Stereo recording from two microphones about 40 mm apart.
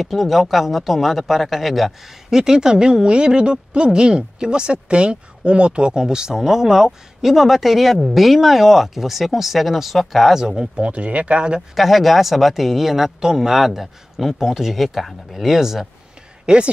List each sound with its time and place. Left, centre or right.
0.0 s speech: centre
2.3 s speech: centre
10.3 s speech: centre
10.9 s speech: right
11.7 s speech: centre
15.4 s speech: centre
16.4 s a woman's voice: right